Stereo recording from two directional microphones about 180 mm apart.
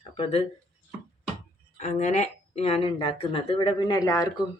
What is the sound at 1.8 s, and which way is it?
Speech, 40° left (ahead or behind).